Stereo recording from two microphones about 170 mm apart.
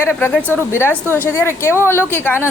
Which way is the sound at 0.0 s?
15° left (ahead or behind).